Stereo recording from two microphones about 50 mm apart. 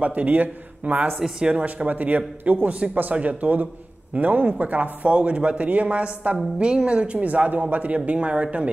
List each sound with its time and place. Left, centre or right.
0.0 s a man's voice: right
1.2 s speech: centre
1.6 s a man's voice: right